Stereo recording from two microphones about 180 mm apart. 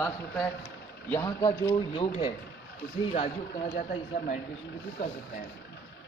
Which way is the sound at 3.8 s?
45° left (ahead or behind).